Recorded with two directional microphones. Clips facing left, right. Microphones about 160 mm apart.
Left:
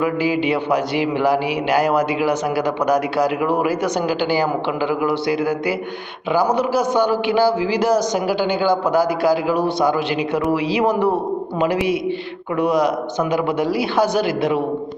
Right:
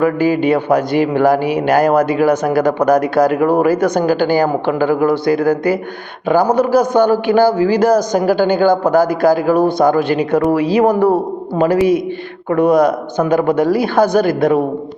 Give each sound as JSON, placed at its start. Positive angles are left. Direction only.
{"t": 0.0, "sound": "speech", "side_deg": -50}